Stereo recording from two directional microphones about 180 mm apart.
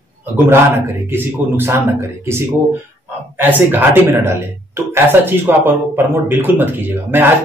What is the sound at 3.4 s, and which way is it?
Speech, 10° right (ahead or behind).